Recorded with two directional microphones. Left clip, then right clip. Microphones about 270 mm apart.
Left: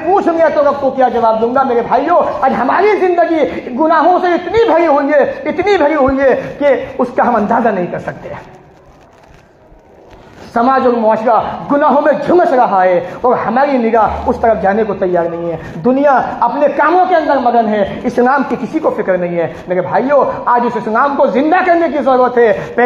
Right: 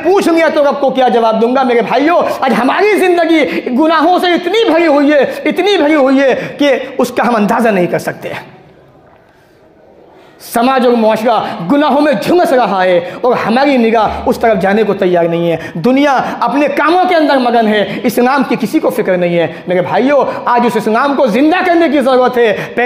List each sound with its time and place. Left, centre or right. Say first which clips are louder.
0.1 s a man's voice: even; right
10.6 s a man's voice: right 1 dB; right